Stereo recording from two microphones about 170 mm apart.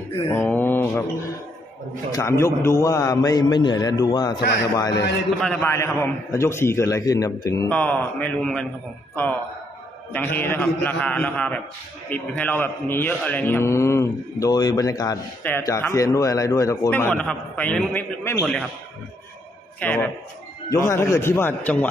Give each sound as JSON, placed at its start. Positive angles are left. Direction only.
{"t": 0.3, "sound": "mantra", "side_deg": 10}
{"t": 2.1, "sound": "a man's voice", "side_deg": 15}
{"t": 4.4, "sound": "a man's voice", "side_deg": 80}
{"t": 4.7, "sound": "a man's voice", "side_deg": 20}
{"t": 5.4, "sound": "a man's voice", "side_deg": 10}
{"t": 19.8, "sound": "a man's voice", "side_deg": 10}